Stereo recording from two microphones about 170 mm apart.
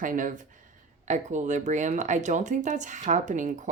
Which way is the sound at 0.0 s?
50° right (ahead or behind).